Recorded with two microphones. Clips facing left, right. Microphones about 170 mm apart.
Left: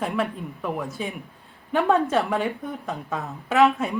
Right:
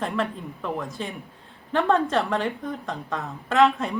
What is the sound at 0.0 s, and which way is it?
A woman's voice, 5° left (ahead or behind).